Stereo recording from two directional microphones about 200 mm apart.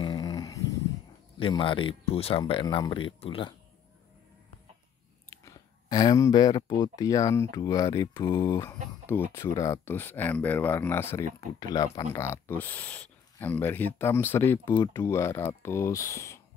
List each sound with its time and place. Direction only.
0.0 s dog: 20° left (ahead or behind)
1.4 s speech: 25° left (ahead or behind)
5.4 s speech: 20° left (ahead or behind)